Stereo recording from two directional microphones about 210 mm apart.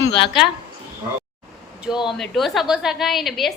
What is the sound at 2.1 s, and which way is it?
A woman's voice, centre (ahead or behind).